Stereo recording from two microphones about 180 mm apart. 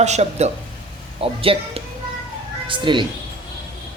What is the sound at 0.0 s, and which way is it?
Speech, 40° right (ahead or behind).